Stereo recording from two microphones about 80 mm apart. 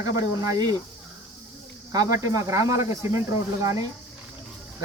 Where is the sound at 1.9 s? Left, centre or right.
Right.